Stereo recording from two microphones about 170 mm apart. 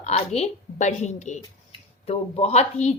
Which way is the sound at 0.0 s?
40° left (ahead or behind).